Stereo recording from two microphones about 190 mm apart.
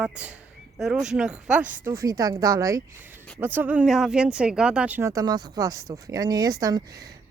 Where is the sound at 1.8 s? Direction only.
15° right (ahead or behind).